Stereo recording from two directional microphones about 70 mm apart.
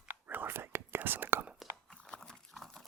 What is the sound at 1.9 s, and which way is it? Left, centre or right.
Dog, centre.